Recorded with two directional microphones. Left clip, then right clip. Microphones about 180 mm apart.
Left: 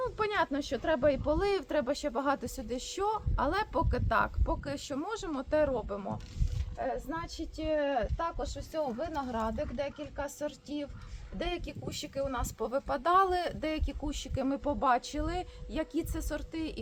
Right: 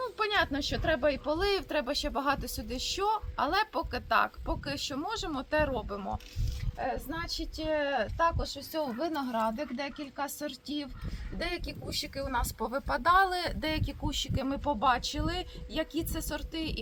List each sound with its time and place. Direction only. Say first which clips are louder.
0.0 s speech: right 1 dB; 15° left (ahead or behind)
12.1 s speech: left 1 dB; 45° left (ahead or behind); by 16.7 s 20° left (ahead or behind)